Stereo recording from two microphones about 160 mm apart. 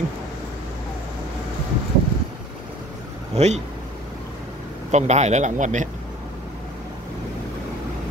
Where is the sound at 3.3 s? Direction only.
45° right (ahead or behind).